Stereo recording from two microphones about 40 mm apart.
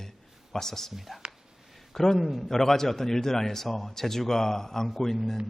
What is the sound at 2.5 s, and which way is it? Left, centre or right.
A man's voice, centre.